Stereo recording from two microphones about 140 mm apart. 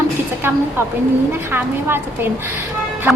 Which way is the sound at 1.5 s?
15° right (ahead or behind).